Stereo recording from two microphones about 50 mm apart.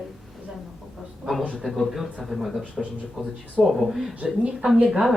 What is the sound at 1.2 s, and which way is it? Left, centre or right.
Speech, centre.